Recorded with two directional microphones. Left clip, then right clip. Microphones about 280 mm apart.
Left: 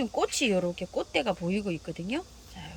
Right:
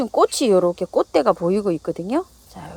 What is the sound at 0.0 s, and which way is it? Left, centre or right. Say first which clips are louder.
Speech: right 10 dB; centre.